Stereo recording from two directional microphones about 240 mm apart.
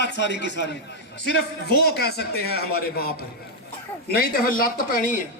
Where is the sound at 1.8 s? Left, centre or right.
Left.